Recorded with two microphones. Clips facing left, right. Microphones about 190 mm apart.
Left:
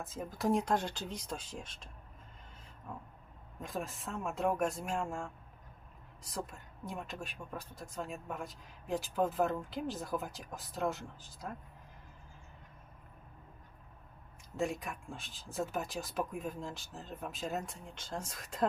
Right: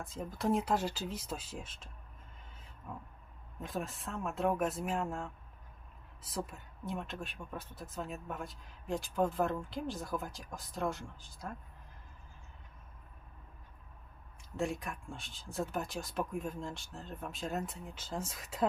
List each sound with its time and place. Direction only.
0.0 s speech: centre (ahead or behind)
2.9 s speech: 5° right (ahead or behind)
14.5 s speech: centre (ahead or behind)